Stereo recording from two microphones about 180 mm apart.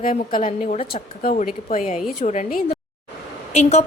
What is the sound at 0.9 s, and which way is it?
A woman's voice, 55° left (ahead or behind).